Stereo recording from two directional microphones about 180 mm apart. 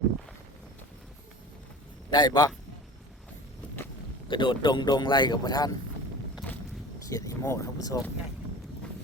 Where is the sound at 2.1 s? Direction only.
20° left (ahead or behind).